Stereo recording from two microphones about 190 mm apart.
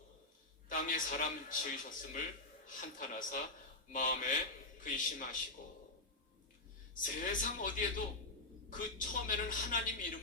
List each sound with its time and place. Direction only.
0.7 s a man's voice: 45° left (ahead or behind)
7.0 s a man's voice: 45° left (ahead or behind)